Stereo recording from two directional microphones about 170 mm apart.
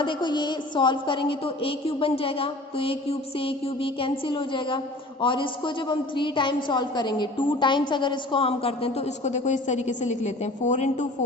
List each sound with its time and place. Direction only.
0.0 s a woman's voice: 30° left (ahead or behind); by 11.0 s 45° left (ahead or behind)